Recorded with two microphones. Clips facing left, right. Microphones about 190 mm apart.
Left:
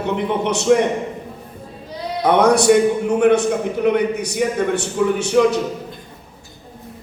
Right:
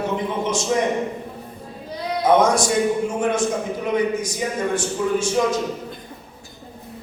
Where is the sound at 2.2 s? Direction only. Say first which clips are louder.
Left 4 dB; 65° left (ahead or behind).